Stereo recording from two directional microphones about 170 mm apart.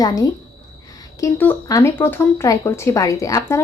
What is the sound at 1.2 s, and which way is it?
Speech, 15° left (ahead or behind).